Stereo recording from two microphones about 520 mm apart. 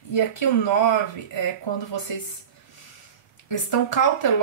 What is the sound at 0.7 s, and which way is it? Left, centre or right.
Speech, left.